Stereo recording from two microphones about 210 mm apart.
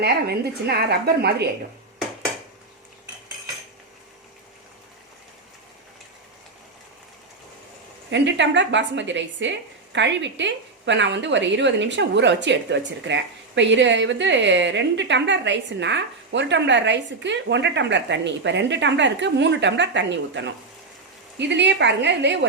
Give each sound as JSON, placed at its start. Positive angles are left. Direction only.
{"t": 0.0, "sound": "a woman's voice", "side_deg": -50}
{"t": 8.1, "sound": "speech", "side_deg": -60}